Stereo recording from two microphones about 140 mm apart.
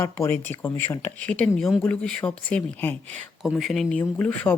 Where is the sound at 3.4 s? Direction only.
Centre (ahead or behind).